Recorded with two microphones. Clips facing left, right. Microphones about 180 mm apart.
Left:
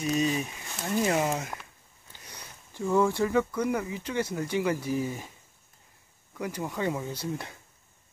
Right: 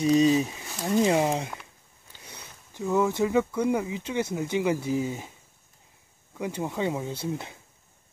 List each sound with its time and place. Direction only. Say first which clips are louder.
0.1 s speech: right 7 dB; 30° right (ahead or behind)
2.2 s a sound: right 1 dB; 10° right (ahead or behind)
3.1 s speech: right 2 dB; 15° right (ahead or behind)
6.5 s speech: right 2 dB; 20° right (ahead or behind)